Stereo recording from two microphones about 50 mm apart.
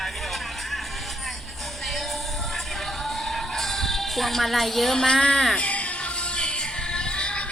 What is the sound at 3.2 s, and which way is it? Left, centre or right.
Music, centre.